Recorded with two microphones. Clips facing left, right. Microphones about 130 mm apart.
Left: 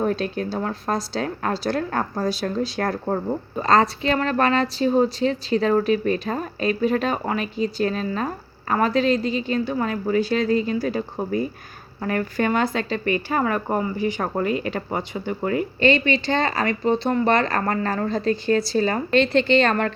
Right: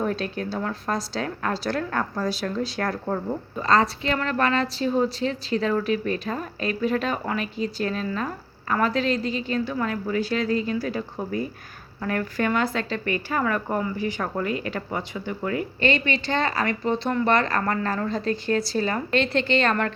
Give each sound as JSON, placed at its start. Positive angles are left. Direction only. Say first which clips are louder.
{"t": 0.0, "sound": "a woman's voice", "louder": "left 3 dB", "side_deg": 30}
{"t": 5.5, "sound": "speech", "louder": "left 4 dB", "side_deg": 35}
{"t": 5.8, "sound": "a woman's voice", "louder": "left 4 dB", "side_deg": 25}